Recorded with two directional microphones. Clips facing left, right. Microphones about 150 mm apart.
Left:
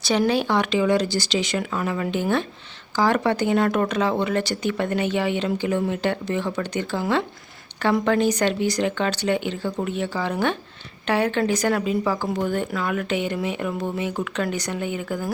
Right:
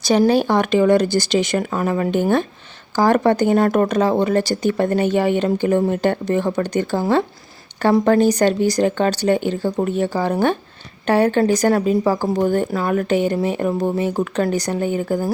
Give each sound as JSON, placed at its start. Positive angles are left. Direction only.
{"t": 0.0, "sound": "speech", "side_deg": -40}